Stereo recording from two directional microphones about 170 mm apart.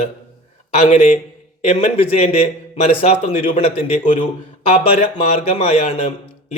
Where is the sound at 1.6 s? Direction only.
40° left (ahead or behind).